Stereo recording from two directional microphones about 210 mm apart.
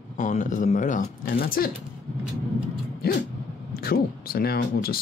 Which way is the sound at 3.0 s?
45° left (ahead or behind).